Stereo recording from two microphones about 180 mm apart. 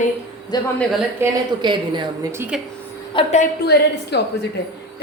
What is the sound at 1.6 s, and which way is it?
Speech, 25° right (ahead or behind).